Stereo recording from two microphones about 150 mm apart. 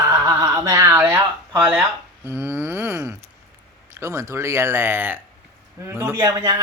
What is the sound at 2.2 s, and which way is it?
A man's voice, 15° right (ahead or behind).